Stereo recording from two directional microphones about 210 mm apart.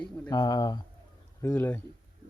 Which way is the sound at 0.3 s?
20° left (ahead or behind).